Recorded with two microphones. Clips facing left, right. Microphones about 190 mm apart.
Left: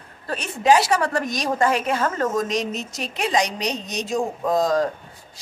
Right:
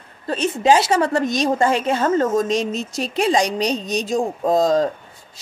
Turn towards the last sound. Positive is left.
turn(degrees=-25)  # may be behind; listen again after turning